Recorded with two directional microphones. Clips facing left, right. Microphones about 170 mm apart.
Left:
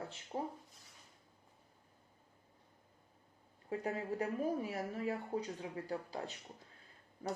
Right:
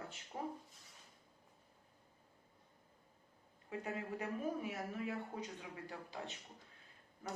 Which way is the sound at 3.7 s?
35° left (ahead or behind).